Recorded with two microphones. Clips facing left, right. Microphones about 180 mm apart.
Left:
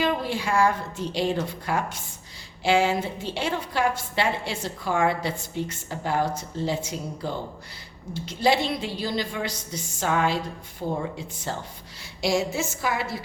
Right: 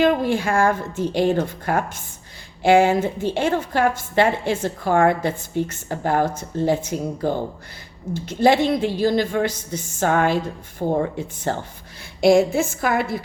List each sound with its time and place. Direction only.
0.0 s a woman's voice: 50° right (ahead or behind)